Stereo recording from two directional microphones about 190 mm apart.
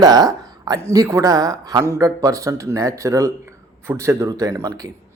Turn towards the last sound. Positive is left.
turn(degrees=-20)  # may be behind; listen again after turning